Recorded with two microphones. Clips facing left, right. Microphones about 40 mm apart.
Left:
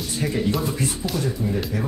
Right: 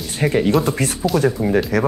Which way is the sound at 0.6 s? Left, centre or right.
Right.